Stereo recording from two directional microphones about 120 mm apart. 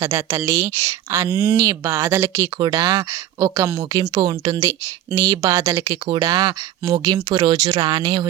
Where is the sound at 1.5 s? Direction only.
30° right (ahead or behind).